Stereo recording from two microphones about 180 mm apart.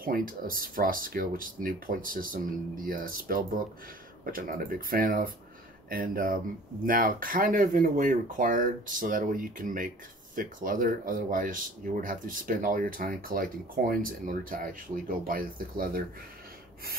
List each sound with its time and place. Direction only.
0.0 s speech: 50° right (ahead or behind)